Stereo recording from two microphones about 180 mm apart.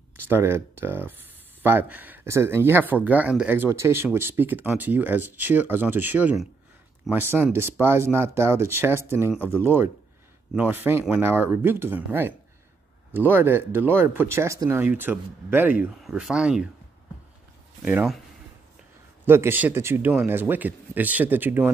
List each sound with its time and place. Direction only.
0.3 s speech: 15° right (ahead or behind)
17.8 s speech: 5° right (ahead or behind)
19.2 s speech: 15° right (ahead or behind)